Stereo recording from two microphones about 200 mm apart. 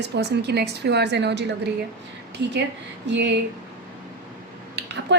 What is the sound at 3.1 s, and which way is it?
Speech, 60° right (ahead or behind).